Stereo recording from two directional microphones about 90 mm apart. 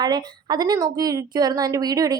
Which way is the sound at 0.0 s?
50° right (ahead or behind).